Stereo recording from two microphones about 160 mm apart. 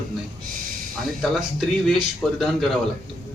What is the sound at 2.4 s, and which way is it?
Speech, centre (ahead or behind).